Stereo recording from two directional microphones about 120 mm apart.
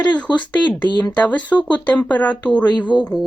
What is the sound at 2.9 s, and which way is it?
Speech, 40° left (ahead or behind).